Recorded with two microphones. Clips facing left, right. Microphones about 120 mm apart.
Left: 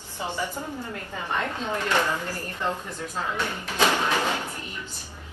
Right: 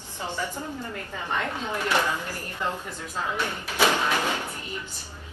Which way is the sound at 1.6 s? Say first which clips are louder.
Left 1 dB; 15° right (ahead or behind).